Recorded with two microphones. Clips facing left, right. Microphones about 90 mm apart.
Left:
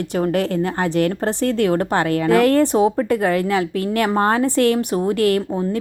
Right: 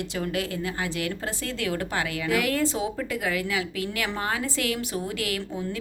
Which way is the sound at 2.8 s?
45° left (ahead or behind).